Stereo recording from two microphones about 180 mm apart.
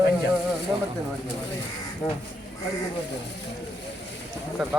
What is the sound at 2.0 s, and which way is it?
Speech, 10° left (ahead or behind).